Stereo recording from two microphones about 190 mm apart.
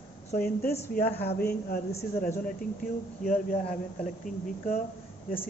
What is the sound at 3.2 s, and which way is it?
Speech, 40° left (ahead or behind).